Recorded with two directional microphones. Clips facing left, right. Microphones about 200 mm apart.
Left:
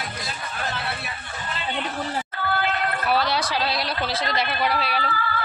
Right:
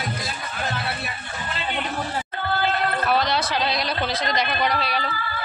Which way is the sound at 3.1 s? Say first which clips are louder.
Left 1 dB; 10° left (ahead or behind).